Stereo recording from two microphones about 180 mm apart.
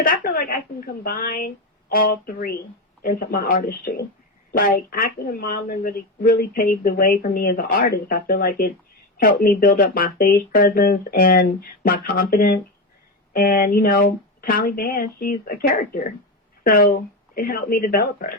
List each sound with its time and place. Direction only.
0.0 s a woman's voice: 55° left (ahead or behind)